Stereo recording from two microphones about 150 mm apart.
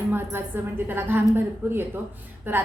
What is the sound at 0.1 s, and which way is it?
A woman's voice, 15° right (ahead or behind).